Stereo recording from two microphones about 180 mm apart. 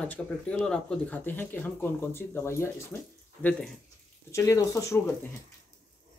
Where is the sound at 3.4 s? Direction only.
Centre (ahead or behind).